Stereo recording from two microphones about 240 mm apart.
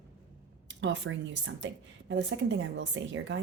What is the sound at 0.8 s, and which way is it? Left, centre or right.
Speech, right.